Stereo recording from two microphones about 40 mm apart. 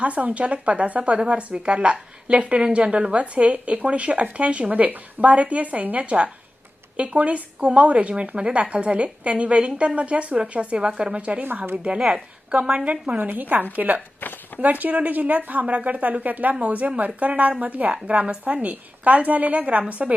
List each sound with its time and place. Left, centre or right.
0.0 s speech: right
10.8 s a woman's voice: right
11.9 s speech: centre
12.5 s speech: right
13.2 s a woman's voice: right
14.2 s a sound: left
14.6 s speech: right